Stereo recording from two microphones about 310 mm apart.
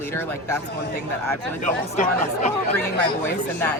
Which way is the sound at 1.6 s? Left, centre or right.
Left.